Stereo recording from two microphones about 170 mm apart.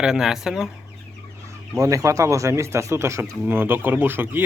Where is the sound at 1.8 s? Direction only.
20° right (ahead or behind).